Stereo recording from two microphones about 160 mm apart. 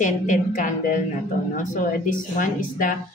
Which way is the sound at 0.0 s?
55° left (ahead or behind).